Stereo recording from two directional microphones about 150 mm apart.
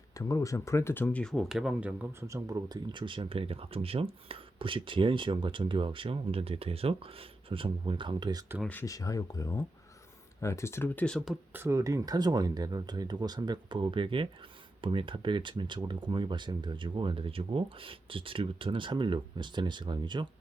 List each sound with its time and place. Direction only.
0.2 s speech: 20° left (ahead or behind); by 2.0 s 10° right (ahead or behind)
2.2 s speech: 20° right (ahead or behind)
8.6 s speech: 10° left (ahead or behind)
8.9 s speech: 20° left (ahead or behind); by 11.3 s 5° left (ahead or behind)
11.5 s speech: 15° right (ahead or behind)